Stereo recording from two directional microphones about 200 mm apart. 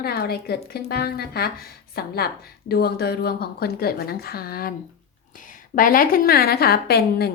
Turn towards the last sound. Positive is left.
turn(degrees=50)  # may be behind; listen again after turning